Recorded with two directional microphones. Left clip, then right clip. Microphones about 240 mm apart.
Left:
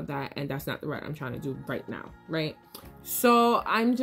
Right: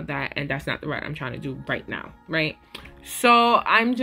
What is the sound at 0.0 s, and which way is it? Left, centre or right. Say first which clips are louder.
Speech: right 6 dB; centre.